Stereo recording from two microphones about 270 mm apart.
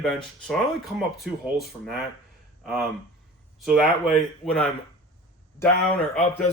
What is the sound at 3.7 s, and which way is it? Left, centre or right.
Speech, centre.